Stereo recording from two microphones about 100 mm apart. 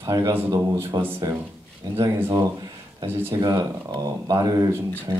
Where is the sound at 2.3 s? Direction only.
40° right (ahead or behind).